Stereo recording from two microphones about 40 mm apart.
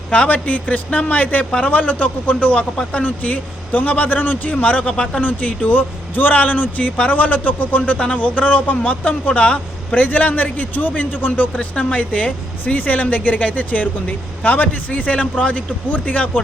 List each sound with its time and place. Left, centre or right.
0.1 s speech: left
6.1 s a man's voice: left
9.9 s a man's voice: left
11.5 s speech: left